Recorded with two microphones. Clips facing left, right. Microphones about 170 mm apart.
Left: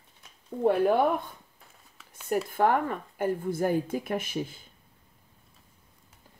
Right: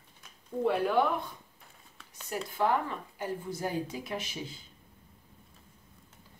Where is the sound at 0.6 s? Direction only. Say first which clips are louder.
Left 5 dB; 50° left (ahead or behind).